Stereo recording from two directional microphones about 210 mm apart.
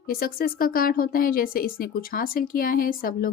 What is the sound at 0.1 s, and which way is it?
A woman's voice, 45° left (ahead or behind).